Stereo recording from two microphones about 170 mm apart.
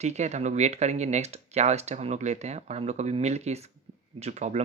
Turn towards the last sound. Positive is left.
turn(degrees=-40)  # may be behind; listen again after turning